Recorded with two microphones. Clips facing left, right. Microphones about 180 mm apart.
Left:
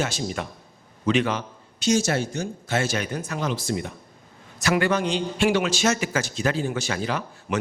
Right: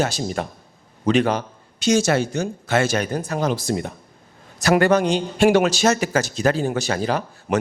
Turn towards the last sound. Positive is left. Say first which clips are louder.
# right 5 dB
turn(degrees=-40)  # may be behind; listen again after turning